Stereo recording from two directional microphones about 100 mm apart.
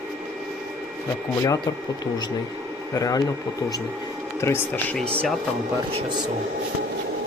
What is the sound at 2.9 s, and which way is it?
Speech, 35° left (ahead or behind).